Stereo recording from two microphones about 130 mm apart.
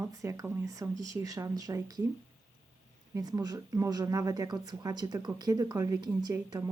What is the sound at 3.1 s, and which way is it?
Speech, 30° right (ahead or behind).